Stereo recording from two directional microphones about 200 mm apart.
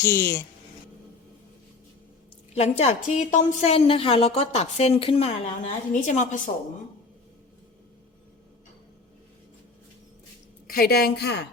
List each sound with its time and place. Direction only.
0.0 s speech: 10° left (ahead or behind)
2.6 s a woman's voice: 35° left (ahead or behind)
10.7 s a woman's voice: 50° left (ahead or behind)